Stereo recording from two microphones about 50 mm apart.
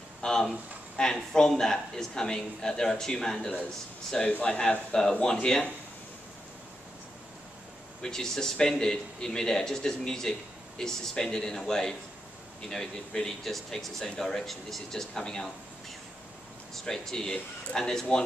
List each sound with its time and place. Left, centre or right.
0.2 s speech: centre
8.0 s speech: centre
16.7 s speech: centre